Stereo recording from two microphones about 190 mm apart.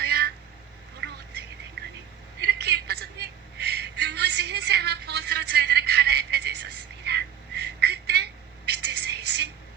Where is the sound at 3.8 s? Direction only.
60° right (ahead or behind).